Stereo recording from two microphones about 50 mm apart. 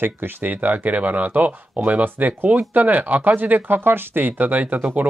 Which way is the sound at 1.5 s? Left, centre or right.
Right.